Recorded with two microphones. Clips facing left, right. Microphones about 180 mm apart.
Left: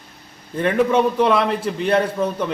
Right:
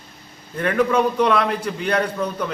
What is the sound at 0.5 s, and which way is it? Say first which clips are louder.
A man's voice: left 2 dB; 25° left (ahead or behind).